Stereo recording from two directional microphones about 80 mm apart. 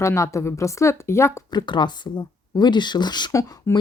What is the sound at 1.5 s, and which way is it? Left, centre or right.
Speech, left.